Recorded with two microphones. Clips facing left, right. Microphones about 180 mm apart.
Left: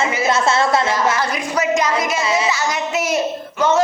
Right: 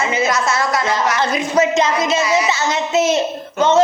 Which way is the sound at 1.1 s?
25° right (ahead or behind).